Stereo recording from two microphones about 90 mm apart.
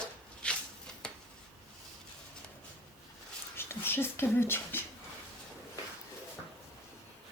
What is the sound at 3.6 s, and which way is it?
Speech, 25° left (ahead or behind).